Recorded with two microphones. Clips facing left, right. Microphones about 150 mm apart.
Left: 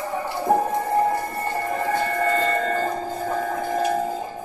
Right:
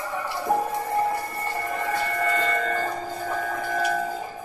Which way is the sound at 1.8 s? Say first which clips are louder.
Left 3 dB; 35° left (ahead or behind).